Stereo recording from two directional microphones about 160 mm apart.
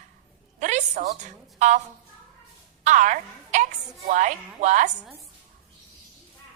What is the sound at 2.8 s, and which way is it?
A woman's voice, 50° right (ahead or behind).